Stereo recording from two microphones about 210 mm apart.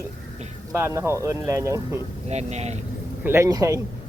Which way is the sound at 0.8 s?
10° right (ahead or behind).